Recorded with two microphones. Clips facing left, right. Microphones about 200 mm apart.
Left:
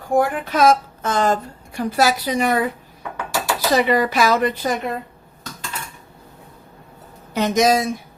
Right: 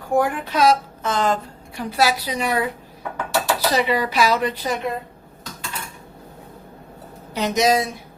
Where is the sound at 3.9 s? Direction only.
45° left (ahead or behind).